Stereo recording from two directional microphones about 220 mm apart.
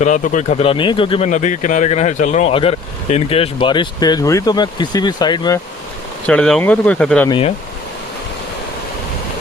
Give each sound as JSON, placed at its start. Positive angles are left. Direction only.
{"t": 0.0, "sound": "speech", "side_deg": 35}
{"t": 6.2, "sound": "speech", "side_deg": 5}
{"t": 7.3, "sound": "speech", "side_deg": 25}